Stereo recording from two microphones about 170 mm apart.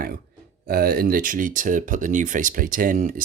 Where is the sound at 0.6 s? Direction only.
60° right (ahead or behind).